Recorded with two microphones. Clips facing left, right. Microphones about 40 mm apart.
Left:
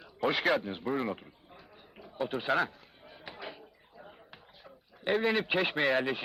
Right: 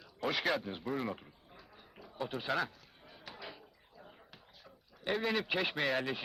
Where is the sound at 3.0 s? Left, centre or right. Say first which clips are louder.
Left 5 dB; centre.